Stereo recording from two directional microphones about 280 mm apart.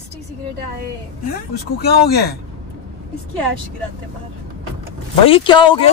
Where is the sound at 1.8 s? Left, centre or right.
Left.